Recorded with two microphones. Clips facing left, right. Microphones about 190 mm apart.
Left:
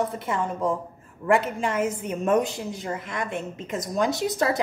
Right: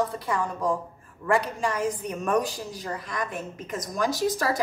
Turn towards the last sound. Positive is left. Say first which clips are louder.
# left 1 dB
turn(degrees=25)  # may be behind; listen again after turning